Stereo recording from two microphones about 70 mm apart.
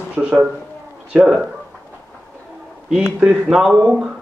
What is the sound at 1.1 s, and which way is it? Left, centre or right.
Speech, centre.